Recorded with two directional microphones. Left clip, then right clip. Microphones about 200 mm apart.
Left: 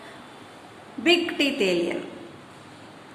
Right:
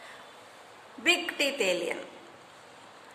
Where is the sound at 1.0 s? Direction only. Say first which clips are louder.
Left 5 dB; 25° right (ahead or behind).